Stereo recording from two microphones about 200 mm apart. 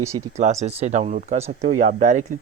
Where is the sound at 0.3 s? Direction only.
35° right (ahead or behind).